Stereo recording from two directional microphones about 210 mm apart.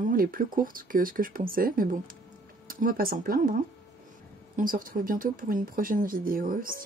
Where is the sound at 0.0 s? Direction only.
40° right (ahead or behind).